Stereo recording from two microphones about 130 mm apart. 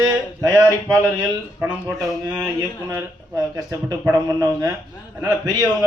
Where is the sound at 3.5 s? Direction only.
30° right (ahead or behind).